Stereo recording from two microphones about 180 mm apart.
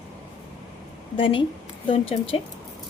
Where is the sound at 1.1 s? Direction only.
30° left (ahead or behind).